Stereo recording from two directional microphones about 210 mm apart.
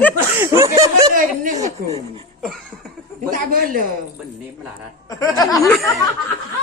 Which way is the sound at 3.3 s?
40° right (ahead or behind).